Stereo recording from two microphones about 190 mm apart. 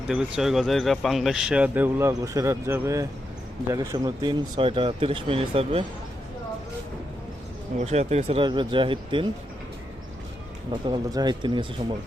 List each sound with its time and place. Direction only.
0.1 s a man's voice: 5° right (ahead or behind); by 5.8 s 30° right (ahead or behind)
7.8 s speech: 35° right (ahead or behind)
10.7 s speech: 25° right (ahead or behind)